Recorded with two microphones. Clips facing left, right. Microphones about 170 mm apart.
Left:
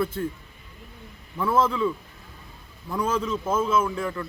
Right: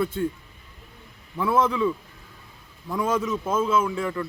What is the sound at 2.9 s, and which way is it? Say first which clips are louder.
Speech: right 1 dB; 10° right (ahead or behind).